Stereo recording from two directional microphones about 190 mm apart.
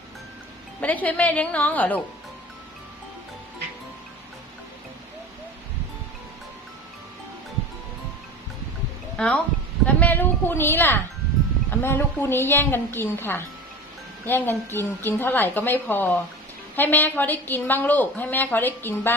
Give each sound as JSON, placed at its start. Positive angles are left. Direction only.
{"t": 0.8, "sound": "a woman's voice", "side_deg": 10}
{"t": 9.1, "sound": "a woman's voice", "side_deg": 5}